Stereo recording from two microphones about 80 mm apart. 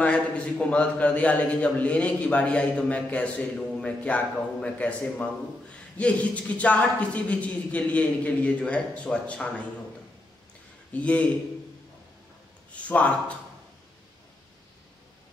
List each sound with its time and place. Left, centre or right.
0.0 s a man's voice: centre
10.9 s a man's voice: centre
12.7 s a sound: centre